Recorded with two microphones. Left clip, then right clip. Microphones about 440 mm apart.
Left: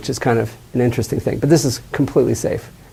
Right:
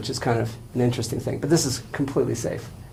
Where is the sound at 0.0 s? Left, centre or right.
Left.